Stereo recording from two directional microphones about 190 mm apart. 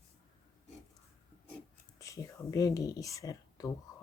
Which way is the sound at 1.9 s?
15° left (ahead or behind).